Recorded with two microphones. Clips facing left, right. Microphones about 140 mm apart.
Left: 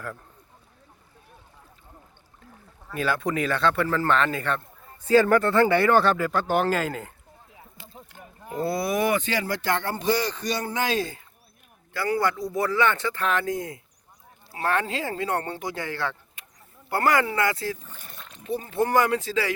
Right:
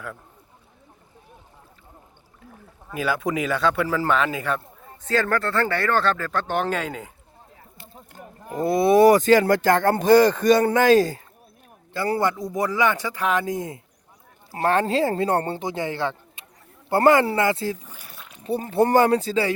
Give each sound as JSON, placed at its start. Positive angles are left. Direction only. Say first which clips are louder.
{"t": 2.9, "sound": "speech", "louder": "right 1 dB", "side_deg": -10}
{"t": 5.0, "sound": "speech", "louder": "left 4 dB", "side_deg": 10}
{"t": 8.5, "sound": "speech", "louder": "right 8 dB", "side_deg": -20}
{"t": 12.2, "sound": "speech", "louder": "right 2 dB", "side_deg": -20}
{"t": 14.5, "sound": "speech", "louder": "right 6 dB", "side_deg": -35}
{"t": 17.8, "sound": "a sound", "louder": "right 1 dB", "side_deg": -10}
{"t": 18.4, "sound": "speech", "louder": "right 5 dB", "side_deg": -35}